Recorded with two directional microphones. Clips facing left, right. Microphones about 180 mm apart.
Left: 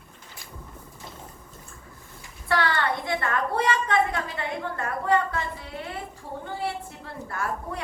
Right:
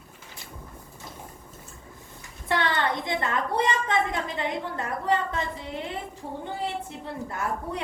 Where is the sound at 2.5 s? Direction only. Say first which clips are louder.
Left 1 dB; 20° right (ahead or behind).